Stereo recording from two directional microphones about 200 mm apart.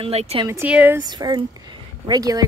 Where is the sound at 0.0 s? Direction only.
30° right (ahead or behind).